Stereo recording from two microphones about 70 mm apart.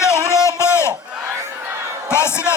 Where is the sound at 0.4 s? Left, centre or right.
Left.